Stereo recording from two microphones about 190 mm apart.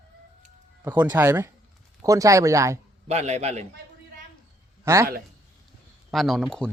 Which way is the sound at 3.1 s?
35° right (ahead or behind).